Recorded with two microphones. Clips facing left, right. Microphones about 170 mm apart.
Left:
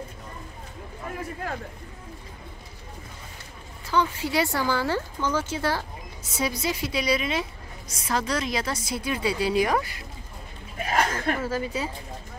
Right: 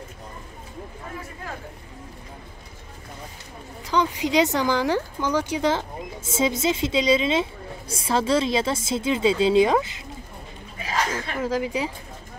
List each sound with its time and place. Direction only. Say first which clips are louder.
3.8 s speech: right 2 dB; 15° right (ahead or behind)
10.8 s a sound: left 1 dB; 55° left (ahead or behind)
11.4 s a woman's voice: right 3 dB; 15° right (ahead or behind)